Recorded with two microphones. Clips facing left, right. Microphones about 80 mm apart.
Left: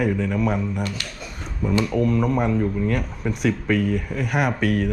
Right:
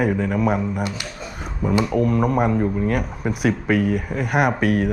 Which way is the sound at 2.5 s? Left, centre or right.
Right.